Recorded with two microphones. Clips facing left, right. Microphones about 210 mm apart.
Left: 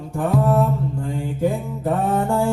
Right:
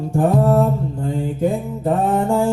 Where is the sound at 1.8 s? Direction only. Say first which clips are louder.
Right 3 dB; 25° right (ahead or behind).